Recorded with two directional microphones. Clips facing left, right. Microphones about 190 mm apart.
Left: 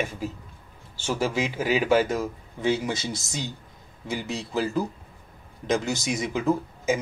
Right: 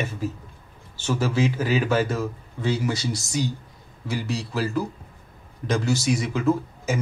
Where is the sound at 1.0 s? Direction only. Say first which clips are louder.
Right 3 dB; 10° left (ahead or behind).